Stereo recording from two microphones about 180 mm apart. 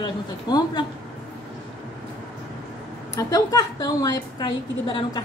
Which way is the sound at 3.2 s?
20° left (ahead or behind).